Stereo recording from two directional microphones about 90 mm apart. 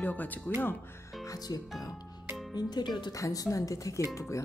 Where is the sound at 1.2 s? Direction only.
40° left (ahead or behind).